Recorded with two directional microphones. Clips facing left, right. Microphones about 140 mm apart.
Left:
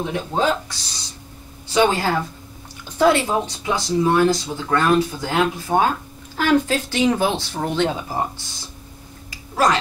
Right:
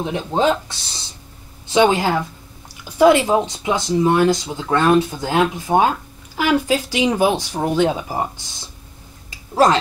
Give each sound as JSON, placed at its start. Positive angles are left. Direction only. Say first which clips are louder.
{"t": 0.0, "sound": "speech", "louder": "right 3 dB", "side_deg": -20}